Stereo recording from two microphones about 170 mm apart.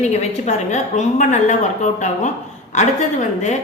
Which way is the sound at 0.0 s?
40° left (ahead or behind).